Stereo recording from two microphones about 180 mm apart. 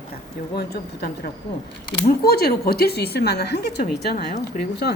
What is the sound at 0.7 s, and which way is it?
A woman's voice, 60° left (ahead or behind).